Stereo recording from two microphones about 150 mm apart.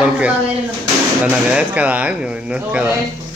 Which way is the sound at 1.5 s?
10° right (ahead or behind).